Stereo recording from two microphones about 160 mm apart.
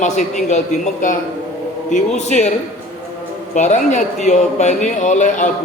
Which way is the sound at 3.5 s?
50° left (ahead or behind).